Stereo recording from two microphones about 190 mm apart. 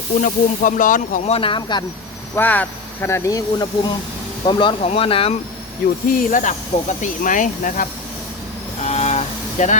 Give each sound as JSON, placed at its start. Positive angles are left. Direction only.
{"t": 0.2, "sound": "speech", "side_deg": 45}
{"t": 2.3, "sound": "speech", "side_deg": 10}
{"t": 6.1, "sound": "speech", "side_deg": 40}
{"t": 8.8, "sound": "a sound", "side_deg": 35}